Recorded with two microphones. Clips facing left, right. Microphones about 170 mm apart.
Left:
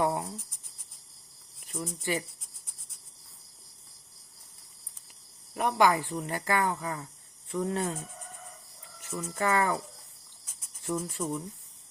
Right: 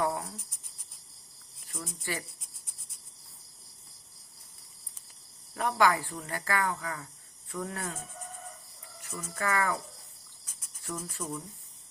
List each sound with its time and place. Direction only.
0.0 s cricket: 20° left (ahead or behind)
1.6 s speech: 20° left (ahead or behind)
5.5 s speech: 20° left (ahead or behind)
9.0 s speech: 25° left (ahead or behind)
10.8 s speech: 25° left (ahead or behind)